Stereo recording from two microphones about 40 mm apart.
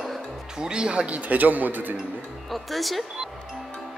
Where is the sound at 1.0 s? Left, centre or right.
Right.